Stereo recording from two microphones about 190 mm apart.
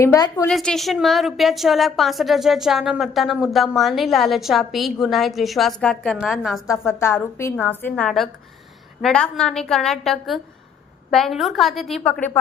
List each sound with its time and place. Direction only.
0.0 s a woman's voice: 15° left (ahead or behind)
0.4 s a woman's voice: 5° left (ahead or behind)
6.7 s a woman's voice: 15° left (ahead or behind)